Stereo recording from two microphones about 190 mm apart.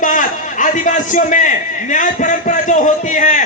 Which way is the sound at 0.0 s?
45° left (ahead or behind).